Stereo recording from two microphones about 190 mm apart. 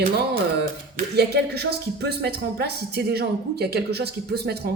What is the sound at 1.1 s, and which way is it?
Speech, 60° right (ahead or behind).